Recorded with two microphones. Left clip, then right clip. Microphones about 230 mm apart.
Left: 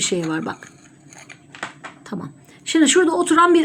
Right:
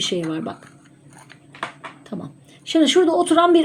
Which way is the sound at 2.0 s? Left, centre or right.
Centre.